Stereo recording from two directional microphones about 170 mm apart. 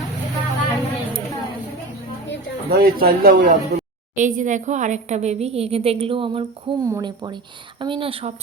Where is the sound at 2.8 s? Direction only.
60° right (ahead or behind).